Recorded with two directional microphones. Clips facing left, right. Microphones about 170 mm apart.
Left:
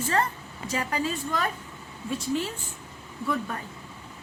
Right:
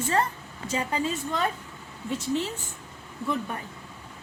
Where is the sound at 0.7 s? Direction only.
25° right (ahead or behind).